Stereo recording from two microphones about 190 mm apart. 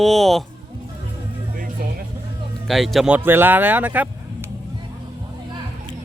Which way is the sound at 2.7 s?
Centre (ahead or behind).